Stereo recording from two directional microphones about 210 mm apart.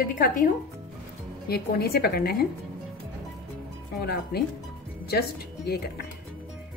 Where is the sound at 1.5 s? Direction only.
50° left (ahead or behind).